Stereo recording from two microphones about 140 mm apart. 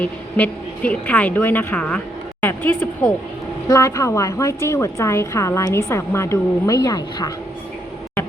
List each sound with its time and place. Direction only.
0.0 s a woman's voice: 10° left (ahead or behind); by 7.3 s 25° left (ahead or behind)